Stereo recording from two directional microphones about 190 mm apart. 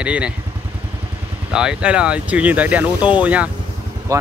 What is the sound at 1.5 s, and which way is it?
Speech, 5° right (ahead or behind).